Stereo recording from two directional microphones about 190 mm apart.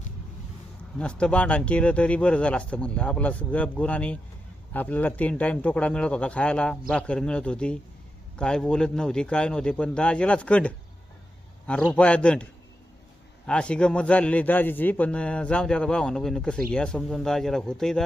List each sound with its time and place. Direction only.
0.9 s a man's voice: 5° left (ahead or behind)
13.5 s a man's voice: 5° left (ahead or behind)